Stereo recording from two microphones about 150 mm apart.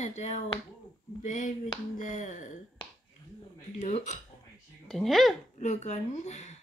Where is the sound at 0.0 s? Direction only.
50° left (ahead or behind).